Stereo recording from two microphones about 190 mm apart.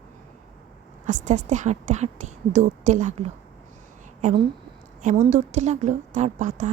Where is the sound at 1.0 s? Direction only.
40° right (ahead or behind).